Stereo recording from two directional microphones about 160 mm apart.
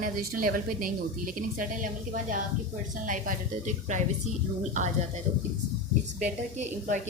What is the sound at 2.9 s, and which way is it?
A woman's voice, 55° right (ahead or behind).